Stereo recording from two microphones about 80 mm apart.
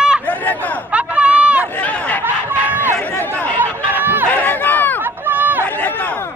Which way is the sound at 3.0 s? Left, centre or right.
Left.